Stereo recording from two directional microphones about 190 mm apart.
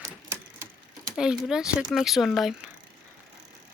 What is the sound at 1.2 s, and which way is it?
Speech, 5° right (ahead or behind).